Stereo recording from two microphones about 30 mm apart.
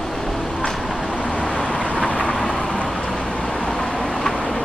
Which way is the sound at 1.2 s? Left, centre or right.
Left.